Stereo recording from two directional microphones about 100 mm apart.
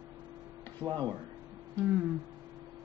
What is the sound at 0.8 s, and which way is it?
Speech, 45° right (ahead or behind).